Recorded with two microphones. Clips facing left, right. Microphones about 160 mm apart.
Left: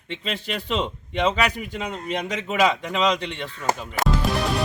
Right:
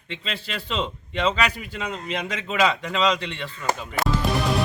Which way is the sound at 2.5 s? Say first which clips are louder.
Left 1 dB; 15° left (ahead or behind).